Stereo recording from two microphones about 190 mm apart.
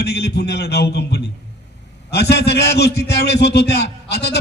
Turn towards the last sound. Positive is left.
turn(degrees=60)  # may be behind; listen again after turning